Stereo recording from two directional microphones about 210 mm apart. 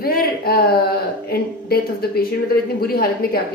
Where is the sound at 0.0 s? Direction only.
45° left (ahead or behind).